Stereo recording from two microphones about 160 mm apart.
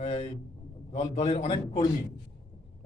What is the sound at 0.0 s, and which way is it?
A man's voice, 45° left (ahead or behind).